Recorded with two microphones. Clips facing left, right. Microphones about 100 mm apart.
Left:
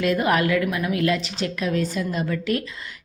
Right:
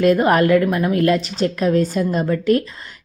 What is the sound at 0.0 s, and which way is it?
A woman's voice, 40° right (ahead or behind).